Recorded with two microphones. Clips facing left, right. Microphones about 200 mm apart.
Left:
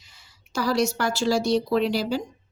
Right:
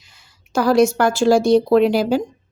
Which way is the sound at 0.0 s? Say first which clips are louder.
Right 2 dB; 50° right (ahead or behind).